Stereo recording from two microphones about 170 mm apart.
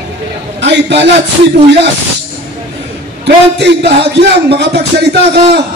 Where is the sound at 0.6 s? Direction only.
90° right.